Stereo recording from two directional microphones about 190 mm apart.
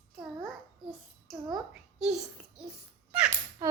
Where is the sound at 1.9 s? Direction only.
5° right (ahead or behind).